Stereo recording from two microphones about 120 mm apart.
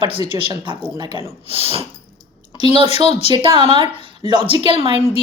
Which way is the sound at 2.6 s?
40° right (ahead or behind).